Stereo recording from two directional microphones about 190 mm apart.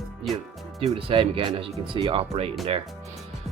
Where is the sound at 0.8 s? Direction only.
30° right (ahead or behind).